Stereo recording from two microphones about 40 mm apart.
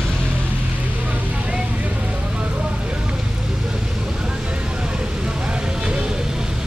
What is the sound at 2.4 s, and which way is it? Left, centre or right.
Vehicle, right.